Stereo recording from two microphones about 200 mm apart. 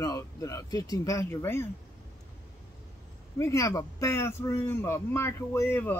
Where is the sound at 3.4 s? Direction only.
15° left (ahead or behind).